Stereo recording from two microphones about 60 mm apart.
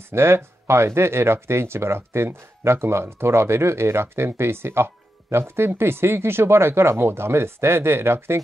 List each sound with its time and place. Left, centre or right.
0.1 s speech: right